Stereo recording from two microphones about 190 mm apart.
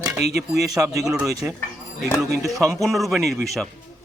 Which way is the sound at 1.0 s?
5° right (ahead or behind).